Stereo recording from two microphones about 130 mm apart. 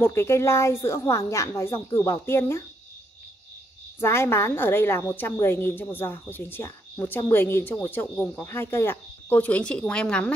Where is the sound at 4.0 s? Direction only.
20° left (ahead or behind).